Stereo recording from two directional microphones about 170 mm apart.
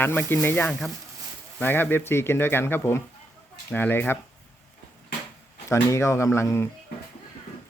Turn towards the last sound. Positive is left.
turn(degrees=15)  # may be behind; listen again after turning